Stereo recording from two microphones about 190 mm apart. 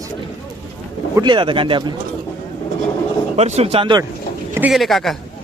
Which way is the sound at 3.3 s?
35° right (ahead or behind).